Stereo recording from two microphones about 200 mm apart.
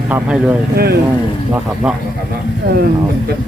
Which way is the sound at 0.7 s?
50° right (ahead or behind).